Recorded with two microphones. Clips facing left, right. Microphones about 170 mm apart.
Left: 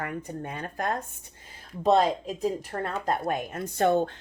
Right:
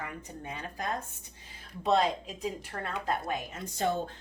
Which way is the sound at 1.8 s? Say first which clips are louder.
Left 5 dB; 40° left (ahead or behind).